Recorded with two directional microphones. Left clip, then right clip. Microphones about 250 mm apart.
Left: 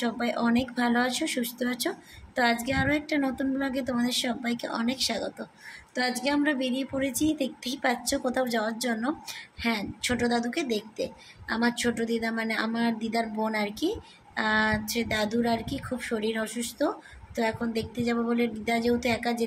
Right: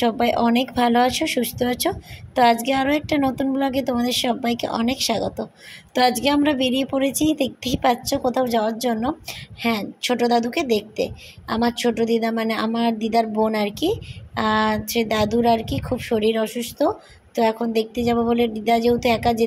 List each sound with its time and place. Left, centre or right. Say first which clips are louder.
0.0 s a woman's voice: right 9 dB; right